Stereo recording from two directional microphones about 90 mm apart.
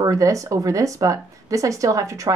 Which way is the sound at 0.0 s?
40° right (ahead or behind).